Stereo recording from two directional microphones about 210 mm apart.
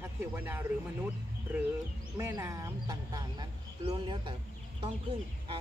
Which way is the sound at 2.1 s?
15° right (ahead or behind).